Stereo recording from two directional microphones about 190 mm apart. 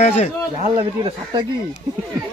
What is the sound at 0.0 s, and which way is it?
Speech, 35° left (ahead or behind).